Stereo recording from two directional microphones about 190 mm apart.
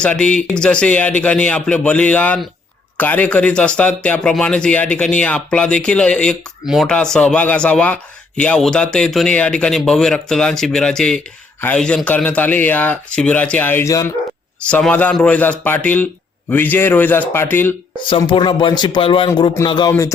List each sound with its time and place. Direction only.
0.0 s speech: 5° left (ahead or behind)
14.6 s speech: 5° left (ahead or behind)
18.0 s speech: 25° left (ahead or behind)